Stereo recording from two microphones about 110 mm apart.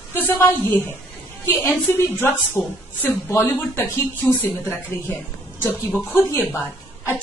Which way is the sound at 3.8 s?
30° left (ahead or behind).